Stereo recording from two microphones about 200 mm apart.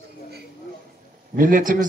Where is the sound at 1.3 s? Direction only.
40° right (ahead or behind).